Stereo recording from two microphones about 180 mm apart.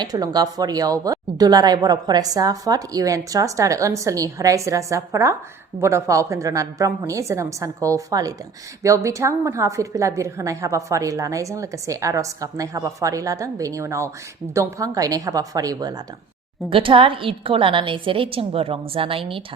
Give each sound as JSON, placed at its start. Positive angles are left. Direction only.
{"t": 0.0, "sound": "a woman's voice", "side_deg": -20}